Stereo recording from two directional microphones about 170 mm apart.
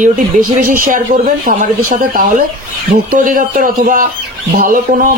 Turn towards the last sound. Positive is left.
turn(degrees=-50)  # may be behind; listen again after turning